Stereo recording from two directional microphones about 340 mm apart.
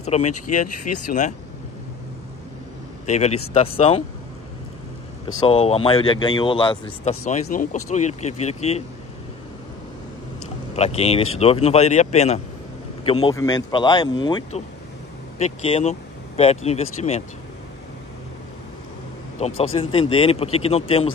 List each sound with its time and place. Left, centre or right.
0.0 s speech: centre
3.1 s speech: centre
5.5 s speech: centre
10.8 s speech: centre
19.4 s speech: centre